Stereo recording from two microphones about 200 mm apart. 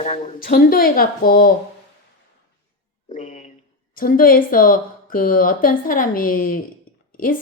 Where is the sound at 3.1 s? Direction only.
35° left (ahead or behind).